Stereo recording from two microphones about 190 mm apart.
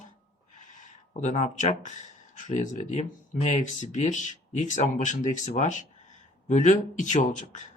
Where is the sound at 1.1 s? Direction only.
40° left (ahead or behind).